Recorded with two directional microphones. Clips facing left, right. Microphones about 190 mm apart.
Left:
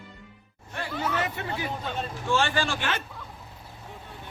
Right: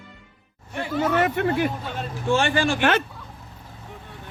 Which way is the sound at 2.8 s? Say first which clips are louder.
Right 10 dB; 70° right (ahead or behind).